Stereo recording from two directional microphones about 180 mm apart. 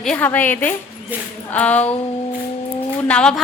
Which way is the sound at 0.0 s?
5° left (ahead or behind).